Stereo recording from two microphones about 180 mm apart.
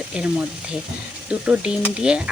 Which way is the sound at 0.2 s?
5° right (ahead or behind).